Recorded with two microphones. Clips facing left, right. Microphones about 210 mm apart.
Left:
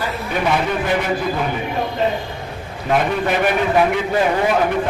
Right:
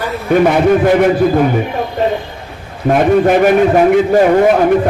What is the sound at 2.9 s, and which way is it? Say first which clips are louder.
A man's voice: right 9 dB; 50° right (ahead or behind).